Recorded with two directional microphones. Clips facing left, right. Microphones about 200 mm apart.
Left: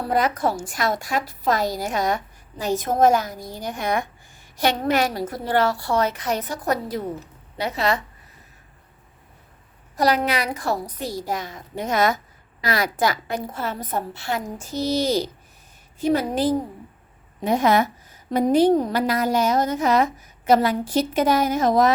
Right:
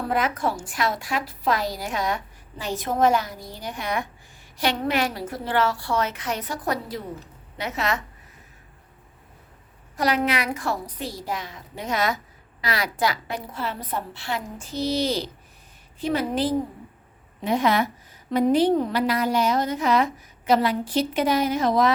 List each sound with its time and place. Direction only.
0.0 s a woman's voice: 35° left (ahead or behind)
7.6 s a woman's voice: 35° left (ahead or behind)
10.0 s a woman's voice: 35° left (ahead or behind)